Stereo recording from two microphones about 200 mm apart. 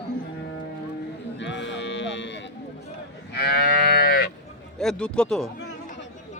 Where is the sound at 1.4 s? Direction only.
65° left (ahead or behind).